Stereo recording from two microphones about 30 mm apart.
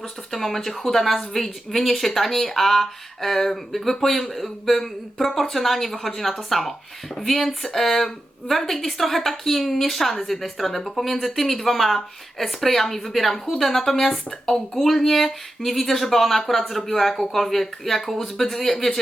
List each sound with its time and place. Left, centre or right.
0.3 s speech: centre